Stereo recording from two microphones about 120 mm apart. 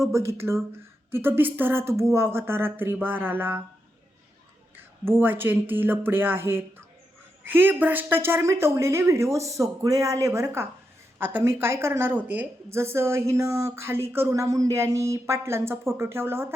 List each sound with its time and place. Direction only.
0.0 s a woman's voice: 25° right (ahead or behind)
5.0 s a woman's voice: 15° right (ahead or behind)